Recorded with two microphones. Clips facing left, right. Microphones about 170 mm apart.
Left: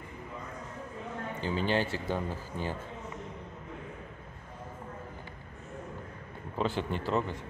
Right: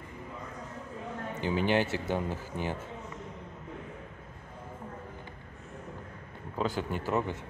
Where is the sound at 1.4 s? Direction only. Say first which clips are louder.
Right 2 dB; 15° right (ahead or behind).